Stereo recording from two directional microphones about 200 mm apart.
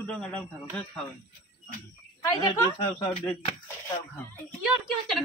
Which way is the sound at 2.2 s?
20° left (ahead or behind).